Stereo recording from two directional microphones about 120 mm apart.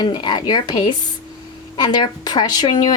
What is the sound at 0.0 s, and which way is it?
Speech, 40° left (ahead or behind).